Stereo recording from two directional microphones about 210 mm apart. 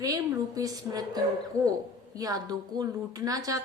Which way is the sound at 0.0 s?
15° right (ahead or behind).